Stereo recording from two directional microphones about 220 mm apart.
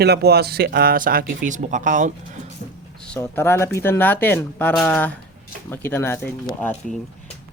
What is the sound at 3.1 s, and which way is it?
Speech, 10° left (ahead or behind).